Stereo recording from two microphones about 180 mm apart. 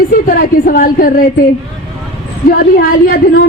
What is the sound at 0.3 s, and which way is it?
Speech, 55° left (ahead or behind).